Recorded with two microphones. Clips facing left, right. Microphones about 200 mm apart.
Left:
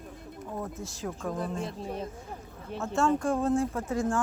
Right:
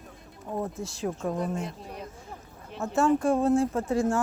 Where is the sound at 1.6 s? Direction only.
25° left (ahead or behind).